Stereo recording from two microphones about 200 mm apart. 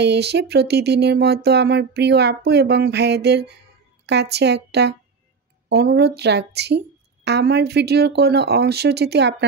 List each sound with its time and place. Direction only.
0.0 s a woman's voice: 55° right (ahead or behind)